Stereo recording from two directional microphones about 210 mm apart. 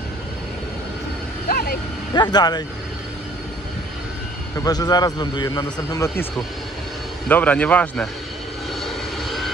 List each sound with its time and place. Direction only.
1.5 s vehicle: 45° left (ahead or behind)
2.1 s speech: 20° left (ahead or behind)
4.6 s a man's voice: 20° left (ahead or behind)
7.2 s a man's voice: 5° left (ahead or behind)
8.8 s vehicle: centre (ahead or behind)